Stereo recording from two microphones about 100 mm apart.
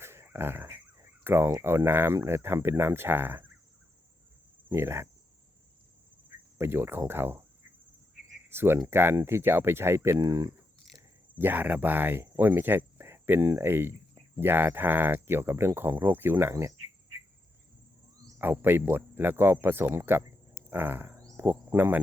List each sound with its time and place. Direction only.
0.0 s a sound: 25° right (ahead or behind)
1.6 s speech: 25° right (ahead or behind)
4.7 s speech: 25° right (ahead or behind)
6.6 s speech: 20° right (ahead or behind)
8.4 s speech: 20° right (ahead or behind)
11.3 s speech: 20° right (ahead or behind)
18.3 s speech: 20° right (ahead or behind)
20.7 s a sound: 20° right (ahead or behind)
21.2 s cricket: 30° right (ahead or behind)